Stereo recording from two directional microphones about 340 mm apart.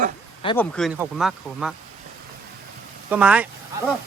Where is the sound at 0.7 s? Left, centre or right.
Centre.